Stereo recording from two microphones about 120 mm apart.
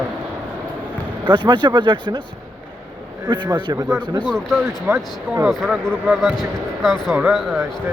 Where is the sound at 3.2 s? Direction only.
40° right (ahead or behind).